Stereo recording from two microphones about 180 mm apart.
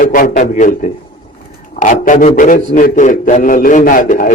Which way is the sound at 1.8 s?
45° left (ahead or behind).